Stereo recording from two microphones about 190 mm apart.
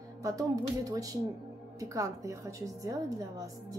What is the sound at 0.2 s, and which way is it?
A woman's voice, 15° right (ahead or behind).